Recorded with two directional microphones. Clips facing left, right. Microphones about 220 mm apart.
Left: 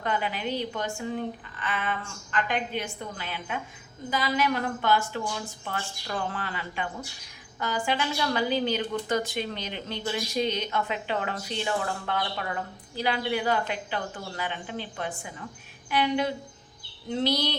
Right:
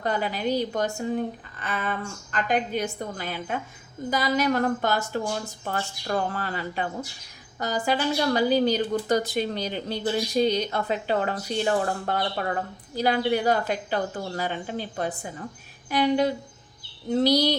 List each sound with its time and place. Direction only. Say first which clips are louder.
0.0 s a woman's voice: right 3 dB; 40° right (ahead or behind)